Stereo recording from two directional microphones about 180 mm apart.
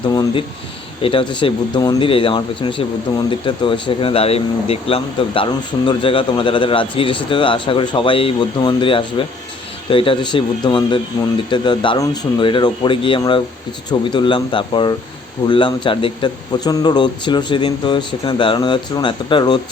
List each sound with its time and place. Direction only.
0.0 s speech: 25° left (ahead or behind)